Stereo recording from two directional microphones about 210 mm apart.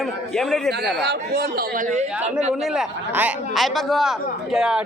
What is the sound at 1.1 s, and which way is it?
Speech, 50° right (ahead or behind).